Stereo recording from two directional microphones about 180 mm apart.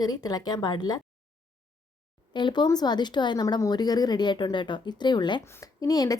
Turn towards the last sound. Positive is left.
turn(degrees=20)  # may be behind; listen again after turning